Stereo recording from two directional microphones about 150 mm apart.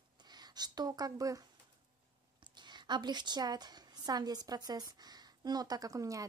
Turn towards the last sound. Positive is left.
turn(degrees=-20)  # may be behind; listen again after turning